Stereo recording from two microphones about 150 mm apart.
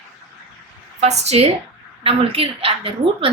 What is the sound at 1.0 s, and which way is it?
A woman's voice, 45° right (ahead or behind).